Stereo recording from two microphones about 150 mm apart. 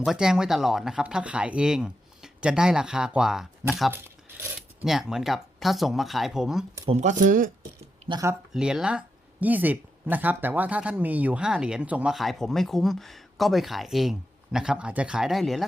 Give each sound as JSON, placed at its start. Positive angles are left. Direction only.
{"t": 0.0, "sound": "speech", "side_deg": -5}
{"t": 3.9, "sound": "a sound", "side_deg": -15}
{"t": 4.9, "sound": "speech", "side_deg": -5}
{"t": 6.9, "sound": "speech", "side_deg": -55}
{"t": 8.5, "sound": "speech", "side_deg": -5}